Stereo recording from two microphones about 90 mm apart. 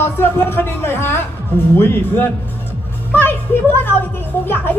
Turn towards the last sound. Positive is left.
turn(degrees=20)  # may be behind; listen again after turning